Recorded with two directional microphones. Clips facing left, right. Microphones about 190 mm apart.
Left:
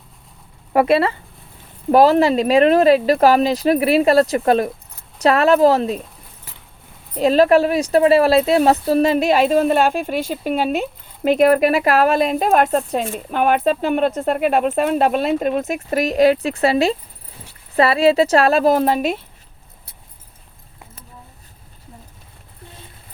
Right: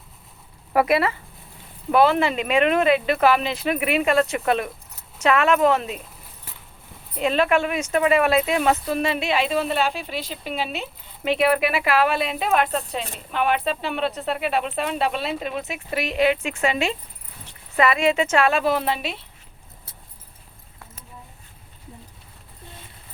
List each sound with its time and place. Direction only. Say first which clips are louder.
0.7 s speech: left 4 dB; 25° left (ahead or behind)
7.2 s speech: left 7 dB; 35° left (ahead or behind)